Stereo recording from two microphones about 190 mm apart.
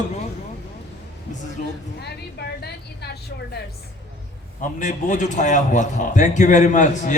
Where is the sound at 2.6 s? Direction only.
60° left (ahead or behind).